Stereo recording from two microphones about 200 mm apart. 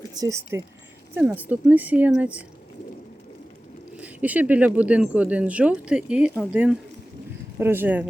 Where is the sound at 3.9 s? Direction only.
5° right (ahead or behind).